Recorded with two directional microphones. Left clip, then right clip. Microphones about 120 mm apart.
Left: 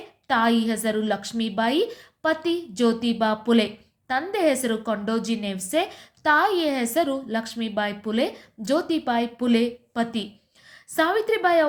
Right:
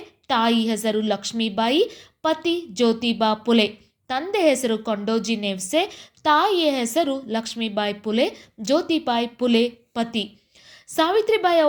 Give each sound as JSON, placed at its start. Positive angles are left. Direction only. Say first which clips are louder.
{"t": 0.3, "sound": "a woman's voice", "louder": "right 1 dB", "side_deg": -20}